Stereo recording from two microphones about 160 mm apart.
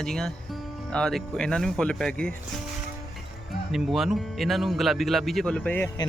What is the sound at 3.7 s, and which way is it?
Speech, centre (ahead or behind).